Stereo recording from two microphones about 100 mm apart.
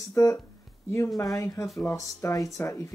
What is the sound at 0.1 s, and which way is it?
Speech, 30° left (ahead or behind).